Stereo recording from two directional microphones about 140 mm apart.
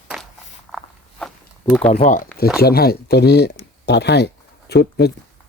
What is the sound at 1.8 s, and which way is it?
Speech, 55° left (ahead or behind).